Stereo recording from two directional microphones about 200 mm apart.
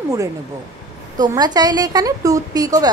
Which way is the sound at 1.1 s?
20° right (ahead or behind).